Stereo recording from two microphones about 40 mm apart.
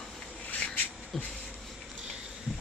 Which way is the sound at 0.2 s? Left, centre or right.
Left.